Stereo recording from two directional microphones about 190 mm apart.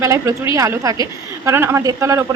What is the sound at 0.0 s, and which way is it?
Speech, 15° right (ahead or behind).